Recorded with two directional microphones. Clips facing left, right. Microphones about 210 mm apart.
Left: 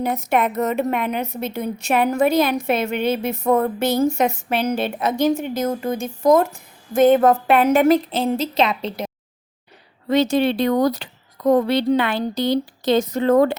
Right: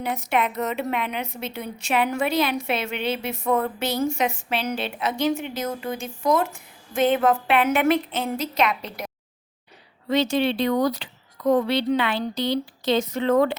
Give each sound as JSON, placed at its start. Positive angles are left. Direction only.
{"t": 0.0, "sound": "a woman's voice", "side_deg": 45}
{"t": 10.1, "sound": "a woman's voice", "side_deg": 45}